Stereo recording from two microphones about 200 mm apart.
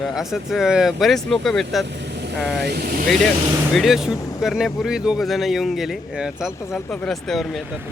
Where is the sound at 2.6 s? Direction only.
55° right (ahead or behind).